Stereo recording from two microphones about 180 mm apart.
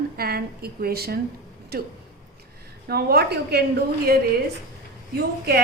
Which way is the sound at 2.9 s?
60° right (ahead or behind).